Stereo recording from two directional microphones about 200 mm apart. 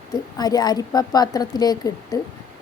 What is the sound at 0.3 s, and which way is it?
A woman's voice, 20° left (ahead or behind).